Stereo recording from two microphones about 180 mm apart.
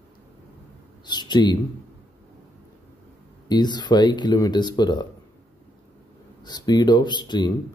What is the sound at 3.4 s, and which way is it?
Speech, 25° left (ahead or behind).